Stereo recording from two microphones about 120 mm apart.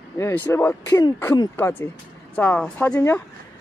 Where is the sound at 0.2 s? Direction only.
20° left (ahead or behind).